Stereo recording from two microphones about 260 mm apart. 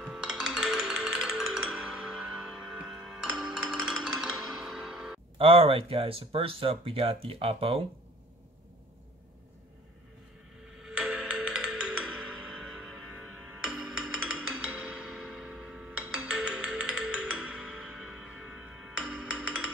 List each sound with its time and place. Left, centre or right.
0.0 s music: centre
5.4 s speech: right
10.8 s music: centre